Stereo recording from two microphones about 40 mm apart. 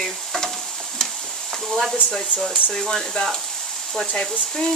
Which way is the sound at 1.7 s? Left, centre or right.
Centre.